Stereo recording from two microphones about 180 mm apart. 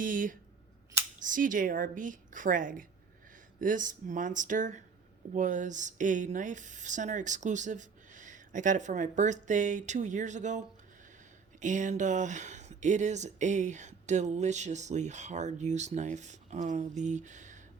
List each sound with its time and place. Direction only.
0.0 s speech: 50° right (ahead or behind)
11.6 s speech: 45° right (ahead or behind)